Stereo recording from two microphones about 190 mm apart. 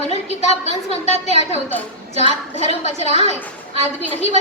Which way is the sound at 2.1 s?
35° left (ahead or behind).